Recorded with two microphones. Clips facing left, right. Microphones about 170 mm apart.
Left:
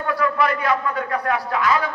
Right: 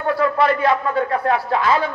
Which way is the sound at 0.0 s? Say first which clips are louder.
Right 3 dB; 30° right (ahead or behind).